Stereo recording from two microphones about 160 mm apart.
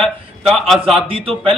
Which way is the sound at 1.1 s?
35° right (ahead or behind).